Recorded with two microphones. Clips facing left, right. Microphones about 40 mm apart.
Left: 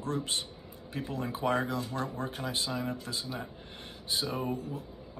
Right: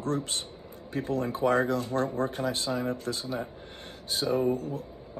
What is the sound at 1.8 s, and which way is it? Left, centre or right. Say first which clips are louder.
Speech: right 6 dB; right.